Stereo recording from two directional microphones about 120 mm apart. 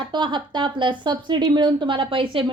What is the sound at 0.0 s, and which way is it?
A woman's voice, 40° right (ahead or behind).